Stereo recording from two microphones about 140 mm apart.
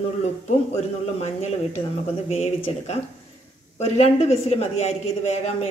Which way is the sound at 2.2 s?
50° left (ahead or behind).